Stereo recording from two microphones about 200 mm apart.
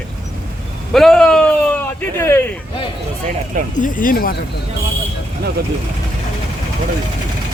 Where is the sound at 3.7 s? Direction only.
40° left (ahead or behind).